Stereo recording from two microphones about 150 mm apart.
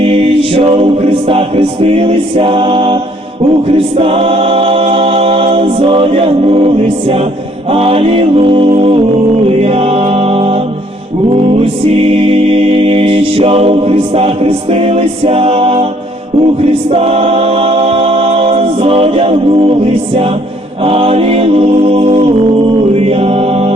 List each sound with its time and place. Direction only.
0.0 s music: 40° right (ahead or behind)
16.6 s a capella: 40° right (ahead or behind)
20.8 s music: 40° right (ahead or behind)